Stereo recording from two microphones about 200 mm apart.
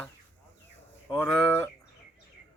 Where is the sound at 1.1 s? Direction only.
5° left (ahead or behind).